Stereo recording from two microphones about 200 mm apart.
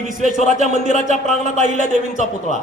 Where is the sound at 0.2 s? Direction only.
35° right (ahead or behind).